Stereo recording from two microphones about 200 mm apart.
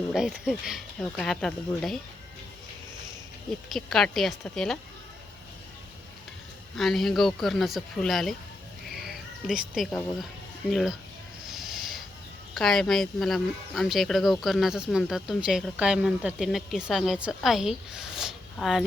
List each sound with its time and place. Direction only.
0.1 s speech: centre (ahead or behind)
3.7 s speech: centre (ahead or behind)
6.7 s speech: centre (ahead or behind)
8.9 s cat: centre (ahead or behind)
10.7 s speech: centre (ahead or behind)
11.5 s a sound: centre (ahead or behind)
12.5 s speech: centre (ahead or behind)